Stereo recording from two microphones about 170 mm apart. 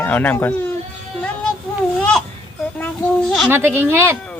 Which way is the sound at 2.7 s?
5° left (ahead or behind).